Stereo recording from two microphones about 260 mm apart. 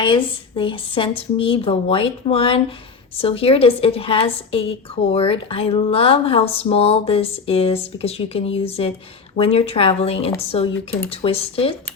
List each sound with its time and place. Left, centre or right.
0.0 s speech: centre